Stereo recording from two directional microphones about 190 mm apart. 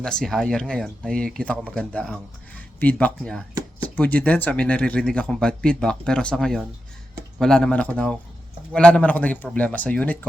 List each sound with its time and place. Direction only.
0.0 s speech: 5° left (ahead or behind)